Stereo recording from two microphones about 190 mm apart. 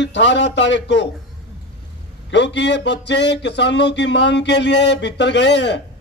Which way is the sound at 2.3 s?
65° left (ahead or behind).